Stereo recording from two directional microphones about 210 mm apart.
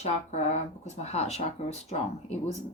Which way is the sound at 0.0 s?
35° left (ahead or behind).